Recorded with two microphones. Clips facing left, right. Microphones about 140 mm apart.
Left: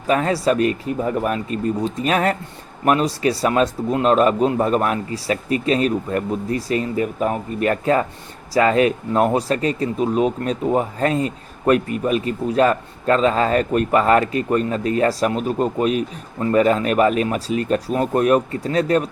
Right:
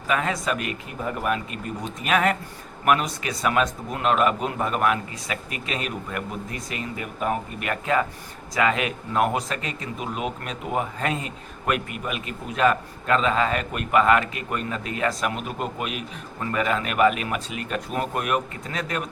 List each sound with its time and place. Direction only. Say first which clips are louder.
0.1 s speech: left 7 dB; 35° left (ahead or behind)